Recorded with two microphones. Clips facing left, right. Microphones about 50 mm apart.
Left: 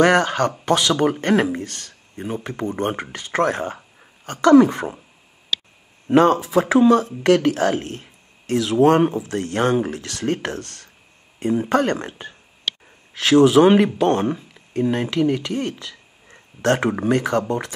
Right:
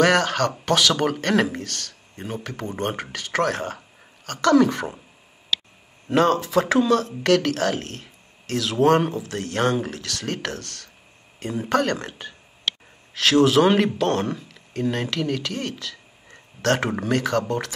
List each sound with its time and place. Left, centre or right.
0.0 s speech: left
6.0 s speech: centre